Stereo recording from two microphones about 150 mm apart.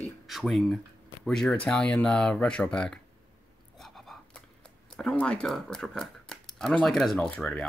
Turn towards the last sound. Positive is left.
turn(degrees=5)  # may be behind; listen again after turning